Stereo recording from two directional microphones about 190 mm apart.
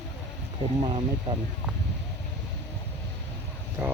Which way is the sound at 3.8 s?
10° right (ahead or behind).